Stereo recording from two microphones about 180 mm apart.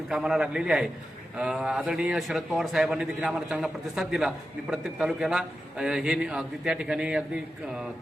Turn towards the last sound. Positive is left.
turn(degrees=-5)  # may be behind; listen again after turning